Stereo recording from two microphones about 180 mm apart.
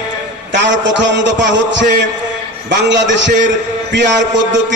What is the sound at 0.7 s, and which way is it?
A man's voice, 80° right.